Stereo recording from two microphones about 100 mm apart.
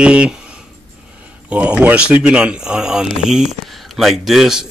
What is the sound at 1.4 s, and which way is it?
Speech, 15° right (ahead or behind).